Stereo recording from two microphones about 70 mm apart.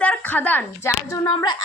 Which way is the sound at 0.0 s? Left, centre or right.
Left.